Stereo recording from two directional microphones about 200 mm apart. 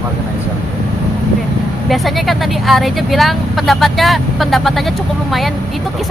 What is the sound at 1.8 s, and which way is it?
Speech, centre (ahead or behind).